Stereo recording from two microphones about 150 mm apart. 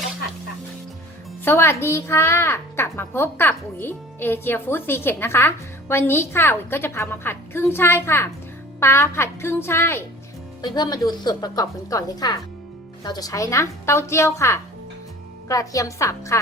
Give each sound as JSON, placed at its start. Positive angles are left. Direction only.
{"t": 1.5, "sound": "a woman's voice", "side_deg": 15}
{"t": 10.6, "sound": "a woman's voice", "side_deg": 30}